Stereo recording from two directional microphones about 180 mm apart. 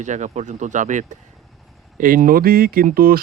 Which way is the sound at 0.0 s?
40° right (ahead or behind).